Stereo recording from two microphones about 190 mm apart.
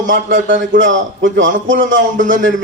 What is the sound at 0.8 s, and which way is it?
A man's voice, 80° right.